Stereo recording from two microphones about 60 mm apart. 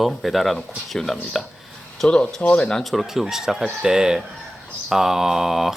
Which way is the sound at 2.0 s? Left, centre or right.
Centre.